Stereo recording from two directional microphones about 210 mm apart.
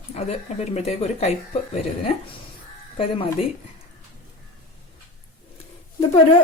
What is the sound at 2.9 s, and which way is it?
Speech, 25° left (ahead or behind).